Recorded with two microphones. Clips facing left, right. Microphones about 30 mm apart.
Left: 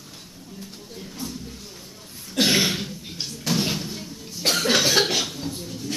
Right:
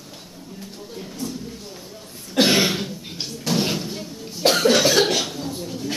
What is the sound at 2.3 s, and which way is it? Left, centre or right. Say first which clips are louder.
Cough: right 3 dB; centre.